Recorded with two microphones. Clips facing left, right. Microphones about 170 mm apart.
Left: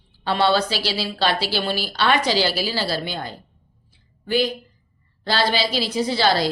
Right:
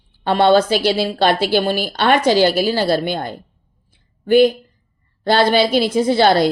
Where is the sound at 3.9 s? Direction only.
50° right (ahead or behind).